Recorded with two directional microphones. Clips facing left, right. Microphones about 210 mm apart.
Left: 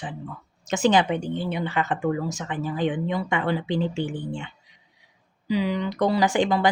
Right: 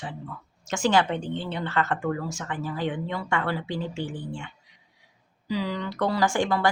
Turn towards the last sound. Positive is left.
turn(degrees=20)  # may be behind; listen again after turning